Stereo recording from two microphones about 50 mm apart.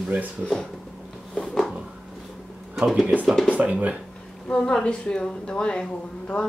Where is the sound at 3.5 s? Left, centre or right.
Right.